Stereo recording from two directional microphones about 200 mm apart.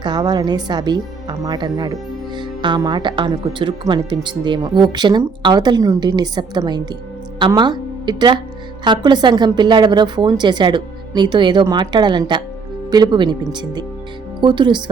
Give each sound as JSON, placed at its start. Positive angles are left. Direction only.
{"t": 0.0, "sound": "speech", "side_deg": -20}